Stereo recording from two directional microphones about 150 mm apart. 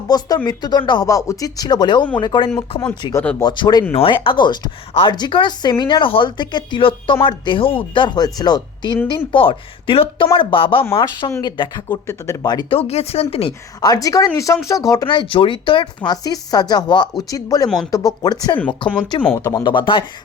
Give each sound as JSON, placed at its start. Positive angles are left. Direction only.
{"t": 0.1, "sound": "a woman's voice", "side_deg": 25}
{"t": 12.0, "sound": "speech", "side_deg": 20}
{"t": 12.7, "sound": "a woman's voice", "side_deg": 45}
{"t": 13.8, "sound": "a woman's voice", "side_deg": 25}
{"t": 19.2, "sound": "speech", "side_deg": 15}
{"t": 19.6, "sound": "a woman's voice", "side_deg": 30}